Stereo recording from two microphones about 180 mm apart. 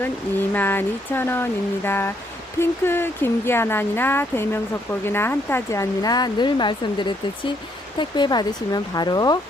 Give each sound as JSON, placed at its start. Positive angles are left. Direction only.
{"t": 0.5, "sound": "speech", "side_deg": 10}